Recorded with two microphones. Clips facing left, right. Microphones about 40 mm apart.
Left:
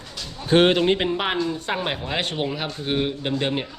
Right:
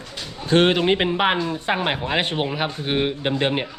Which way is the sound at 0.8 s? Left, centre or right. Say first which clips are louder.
Right 3 dB; centre.